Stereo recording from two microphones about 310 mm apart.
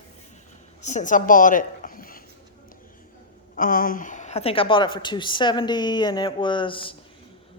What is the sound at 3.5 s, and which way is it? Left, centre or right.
A woman's voice, left.